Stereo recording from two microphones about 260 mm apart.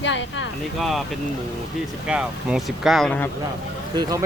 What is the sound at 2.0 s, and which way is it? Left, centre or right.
Speech, centre.